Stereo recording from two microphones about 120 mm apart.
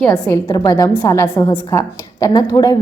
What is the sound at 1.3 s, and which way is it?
Speech, 35° left (ahead or behind).